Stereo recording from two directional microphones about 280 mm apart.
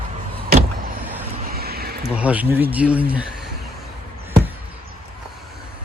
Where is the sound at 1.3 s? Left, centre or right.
Right.